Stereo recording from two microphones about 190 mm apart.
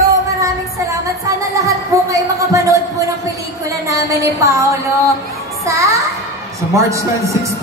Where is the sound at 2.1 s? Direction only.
15° right (ahead or behind).